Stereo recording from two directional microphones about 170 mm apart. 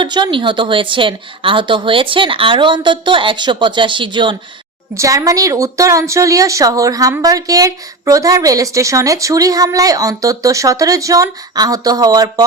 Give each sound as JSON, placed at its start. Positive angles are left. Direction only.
{"t": 0.0, "sound": "a woman's voice", "side_deg": -25}